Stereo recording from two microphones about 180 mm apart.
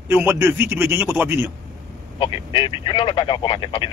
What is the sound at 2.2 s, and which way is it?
Speech, 25° left (ahead or behind).